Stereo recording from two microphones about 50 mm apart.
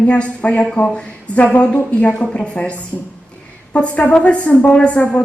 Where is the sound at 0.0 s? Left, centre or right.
Left.